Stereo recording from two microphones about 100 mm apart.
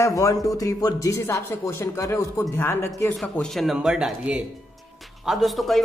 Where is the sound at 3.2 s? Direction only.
Centre (ahead or behind).